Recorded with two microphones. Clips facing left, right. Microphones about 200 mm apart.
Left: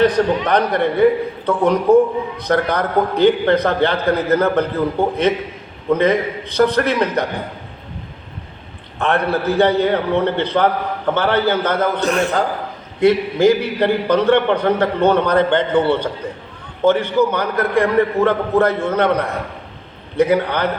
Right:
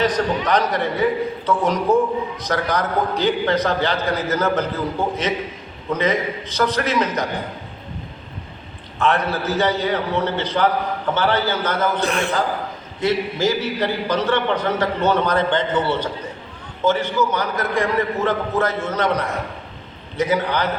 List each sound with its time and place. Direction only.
0.0 s a man's voice: 55° left (ahead or behind)
5.9 s a man's voice: 55° left (ahead or behind)
9.0 s a man's voice: 55° left (ahead or behind)
13.0 s a man's voice: 60° left (ahead or behind)